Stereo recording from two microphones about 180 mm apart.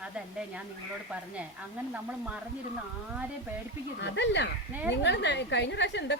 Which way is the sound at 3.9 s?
75° left (ahead or behind).